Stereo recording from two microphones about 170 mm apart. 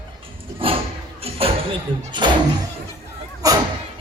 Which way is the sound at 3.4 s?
20° right (ahead or behind).